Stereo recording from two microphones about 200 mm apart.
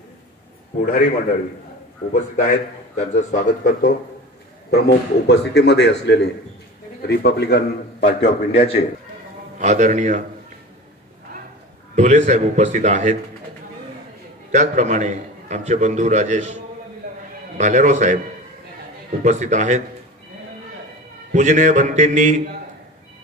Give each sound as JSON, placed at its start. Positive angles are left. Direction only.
{"t": 2.3, "sound": "a man's voice", "side_deg": 35}
{"t": 4.6, "sound": "a man's voice", "side_deg": 55}
{"t": 8.2, "sound": "a man's voice", "side_deg": 30}
{"t": 9.6, "sound": "a man's voice", "side_deg": -35}
{"t": 11.9, "sound": "a man's voice", "side_deg": -35}
{"t": 14.5, "sound": "a man's voice", "side_deg": -35}
{"t": 17.6, "sound": "a man's voice", "side_deg": -35}
{"t": 19.2, "sound": "a man's voice", "side_deg": -35}
{"t": 21.3, "sound": "a man's voice", "side_deg": -35}